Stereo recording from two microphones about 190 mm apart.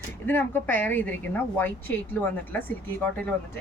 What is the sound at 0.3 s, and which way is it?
A woman's voice, 10° left (ahead or behind).